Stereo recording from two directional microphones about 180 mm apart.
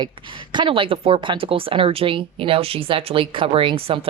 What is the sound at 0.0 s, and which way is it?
Speech, 25° right (ahead or behind).